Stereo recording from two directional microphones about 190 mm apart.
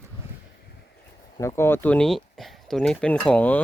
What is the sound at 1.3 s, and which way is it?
Speech, 15° left (ahead or behind).